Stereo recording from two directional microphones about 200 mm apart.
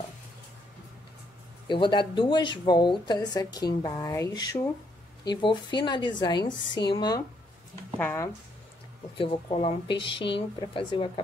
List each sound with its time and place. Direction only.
1.7 s a woman's voice: 25° left (ahead or behind)
9.1 s a woman's voice: 25° left (ahead or behind)